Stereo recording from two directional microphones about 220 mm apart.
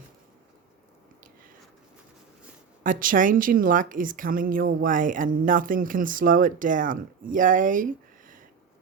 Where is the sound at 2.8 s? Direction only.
40° right (ahead or behind).